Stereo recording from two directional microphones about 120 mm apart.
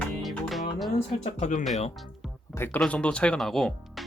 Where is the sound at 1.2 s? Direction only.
80° left.